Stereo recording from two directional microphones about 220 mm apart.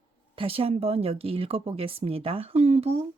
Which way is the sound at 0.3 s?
25° right (ahead or behind).